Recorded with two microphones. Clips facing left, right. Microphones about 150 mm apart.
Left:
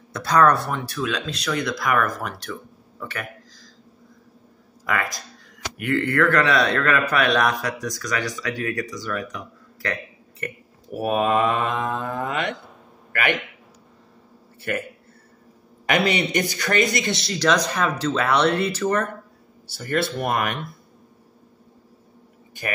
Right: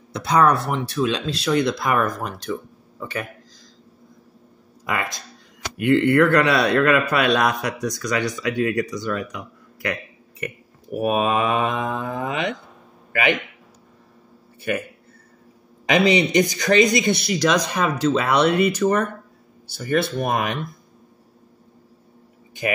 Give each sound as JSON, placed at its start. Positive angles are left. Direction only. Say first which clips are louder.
{"t": 0.1, "sound": "a man's voice", "louder": "even", "side_deg": -20}
{"t": 4.8, "sound": "a man's voice", "louder": "even", "side_deg": -20}
{"t": 10.4, "sound": "mantra", "louder": "right 2 dB", "side_deg": -15}
{"t": 16.0, "sound": "mantra", "louder": "right 7 dB", "side_deg": -15}
{"t": 19.7, "sound": "a man's voice", "louder": "right 4 dB", "side_deg": -20}